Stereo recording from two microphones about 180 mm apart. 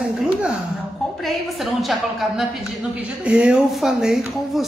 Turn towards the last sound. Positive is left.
turn(degrees=0)  # may be behind; listen again after turning